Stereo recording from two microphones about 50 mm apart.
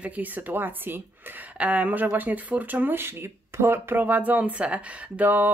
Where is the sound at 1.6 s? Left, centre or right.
Right.